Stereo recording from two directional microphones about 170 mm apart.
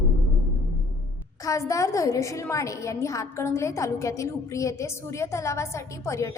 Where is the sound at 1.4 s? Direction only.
20° left (ahead or behind).